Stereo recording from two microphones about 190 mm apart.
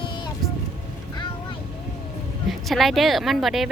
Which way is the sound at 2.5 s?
Centre (ahead or behind).